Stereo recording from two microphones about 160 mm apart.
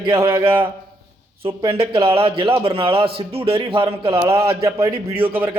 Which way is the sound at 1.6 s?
35° right (ahead or behind).